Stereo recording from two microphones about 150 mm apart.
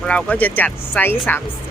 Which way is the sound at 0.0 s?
5° left (ahead or behind).